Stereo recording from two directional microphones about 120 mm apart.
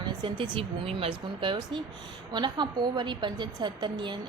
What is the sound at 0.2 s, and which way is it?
A woman's voice, 40° right (ahead or behind).